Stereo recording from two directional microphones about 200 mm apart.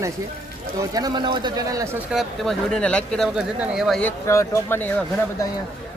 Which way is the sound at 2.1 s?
Centre (ahead or behind).